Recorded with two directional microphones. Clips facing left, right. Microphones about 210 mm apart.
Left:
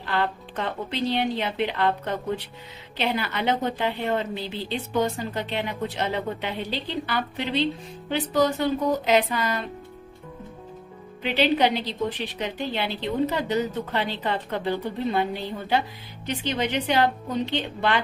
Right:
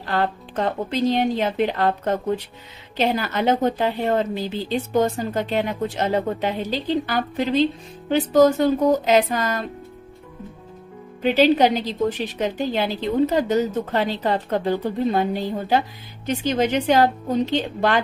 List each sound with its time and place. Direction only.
0.0 s a woman's voice: 40° right (ahead or behind)
11.2 s a woman's voice: 45° right (ahead or behind)